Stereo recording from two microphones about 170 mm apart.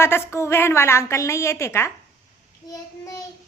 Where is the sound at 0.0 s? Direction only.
15° left (ahead or behind).